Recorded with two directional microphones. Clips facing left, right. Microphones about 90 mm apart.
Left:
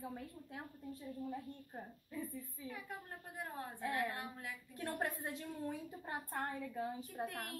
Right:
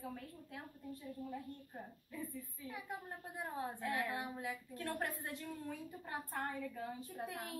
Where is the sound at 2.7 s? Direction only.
15° right (ahead or behind).